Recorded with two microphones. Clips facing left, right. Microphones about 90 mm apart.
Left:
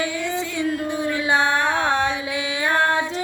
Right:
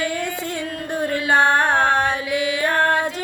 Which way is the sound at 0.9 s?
50° right (ahead or behind).